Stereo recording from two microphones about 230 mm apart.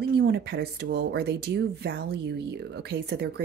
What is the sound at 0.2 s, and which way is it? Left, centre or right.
Speech, right.